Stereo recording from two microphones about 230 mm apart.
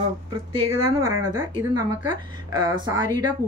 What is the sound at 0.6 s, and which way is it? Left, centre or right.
Speech, right.